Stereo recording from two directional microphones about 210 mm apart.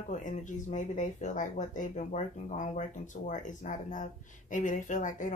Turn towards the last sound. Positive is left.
turn(degrees=40)  # may be behind; listen again after turning